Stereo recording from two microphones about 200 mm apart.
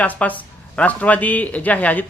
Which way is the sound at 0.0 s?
5° left (ahead or behind).